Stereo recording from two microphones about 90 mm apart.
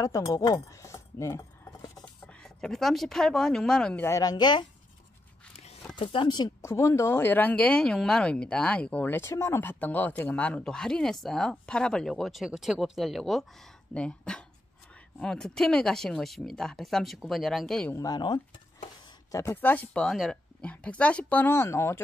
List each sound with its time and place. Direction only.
0.0 s keys jangling: 45° left (ahead or behind)
2.2 s speech: 5° left (ahead or behind)
4.2 s speech: 50° left (ahead or behind)
5.9 s speech: 70° left (ahead or behind)
6.6 s speech: 35° left (ahead or behind); by 17.8 s 5° left (ahead or behind)
17.9 s speech: 45° left (ahead or behind)
19.5 s speech: 20° left (ahead or behind)
20.0 s speech: 5° left (ahead or behind)
21.5 s speech: 30° left (ahead or behind)